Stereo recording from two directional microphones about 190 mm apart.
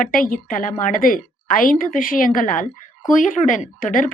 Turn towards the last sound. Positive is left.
turn(degrees=45)  # may be behind; listen again after turning